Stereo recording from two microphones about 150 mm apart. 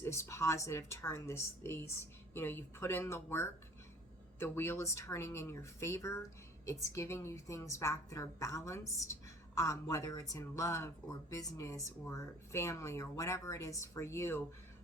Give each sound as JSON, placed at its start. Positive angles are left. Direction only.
{"t": 0.0, "sound": "a woman's voice", "side_deg": 20}